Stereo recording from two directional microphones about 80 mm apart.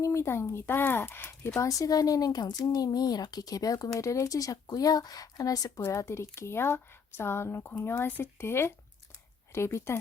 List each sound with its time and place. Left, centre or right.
0.0 s a woman's voice: left
1.8 s speech: left
5.8 s a woman's voice: left